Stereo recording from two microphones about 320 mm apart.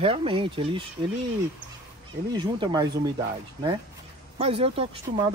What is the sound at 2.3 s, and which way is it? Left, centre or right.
Speech, centre.